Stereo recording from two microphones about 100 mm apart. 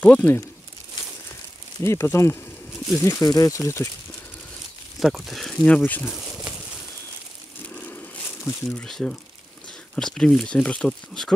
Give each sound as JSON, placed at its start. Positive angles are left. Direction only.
{"t": 0.0, "sound": "speech", "side_deg": 15}
{"t": 1.8, "sound": "speech", "side_deg": 30}
{"t": 5.0, "sound": "speech", "side_deg": -5}
{"t": 6.0, "sound": "a sound", "side_deg": -5}
{"t": 7.7, "sound": "a sound", "side_deg": 15}
{"t": 8.8, "sound": "speech", "side_deg": 5}